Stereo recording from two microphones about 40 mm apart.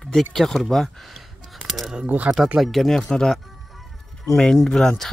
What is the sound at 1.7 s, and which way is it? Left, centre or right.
Speech, centre.